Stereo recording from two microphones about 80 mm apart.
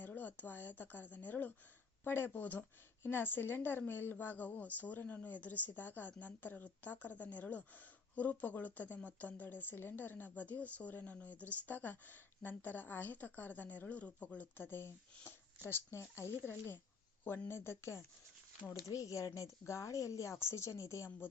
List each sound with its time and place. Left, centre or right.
0.0 s speech: left
14.7 s speech: left
18.7 s speech: left